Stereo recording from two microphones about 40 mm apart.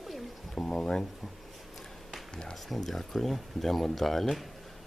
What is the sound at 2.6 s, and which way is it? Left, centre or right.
Speech, centre.